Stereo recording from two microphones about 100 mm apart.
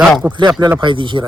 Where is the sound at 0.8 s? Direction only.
55° right (ahead or behind).